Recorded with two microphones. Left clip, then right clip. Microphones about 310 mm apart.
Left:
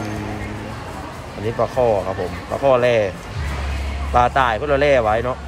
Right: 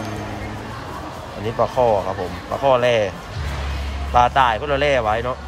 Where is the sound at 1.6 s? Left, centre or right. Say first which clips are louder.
Right 1 dB; centre.